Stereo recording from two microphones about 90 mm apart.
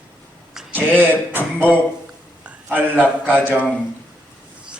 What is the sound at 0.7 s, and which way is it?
Music, 20° right (ahead or behind).